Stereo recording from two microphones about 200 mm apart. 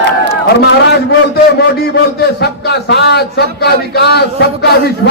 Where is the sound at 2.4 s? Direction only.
55° left (ahead or behind).